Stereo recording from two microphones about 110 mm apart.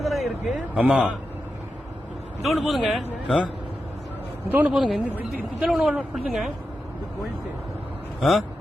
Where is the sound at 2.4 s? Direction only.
Centre (ahead or behind).